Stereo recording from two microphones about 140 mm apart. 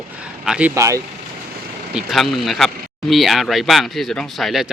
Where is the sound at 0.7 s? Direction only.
20° right (ahead or behind).